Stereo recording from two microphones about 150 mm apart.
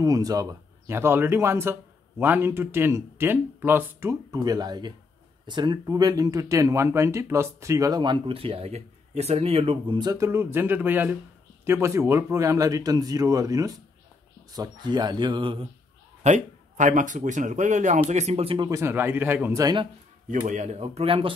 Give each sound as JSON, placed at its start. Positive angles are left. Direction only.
{"t": 0.0, "sound": "speech", "side_deg": -25}
{"t": 16.2, "sound": "speech", "side_deg": -50}
{"t": 18.7, "sound": "speech", "side_deg": -15}
{"t": 19.6, "sound": "speech", "side_deg": -30}
{"t": 20.2, "sound": "speech", "side_deg": -60}